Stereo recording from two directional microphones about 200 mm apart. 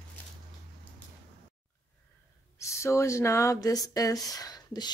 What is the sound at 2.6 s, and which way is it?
Speech, 15° left (ahead or behind).